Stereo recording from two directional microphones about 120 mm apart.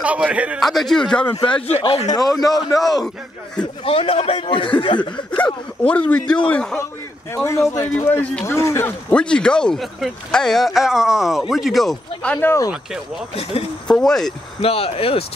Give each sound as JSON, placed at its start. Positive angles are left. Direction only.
{"t": 0.0, "sound": "a man's voice", "side_deg": -10}
{"t": 0.6, "sound": "speech", "side_deg": 0}
{"t": 1.3, "sound": "a man's voice", "side_deg": 40}
{"t": 1.7, "sound": "a man's voice", "side_deg": 55}
{"t": 2.8, "sound": "a man's voice", "side_deg": 30}
{"t": 3.8, "sound": "speech", "side_deg": 50}
{"t": 5.4, "sound": "a man's voice", "side_deg": 10}
{"t": 7.3, "sound": "a man's voice", "side_deg": 20}
{"t": 9.1, "sound": "speech", "side_deg": 10}
{"t": 13.3, "sound": "speech", "side_deg": 55}
{"t": 13.8, "sound": "speech", "side_deg": 5}
{"t": 14.6, "sound": "speech", "side_deg": 55}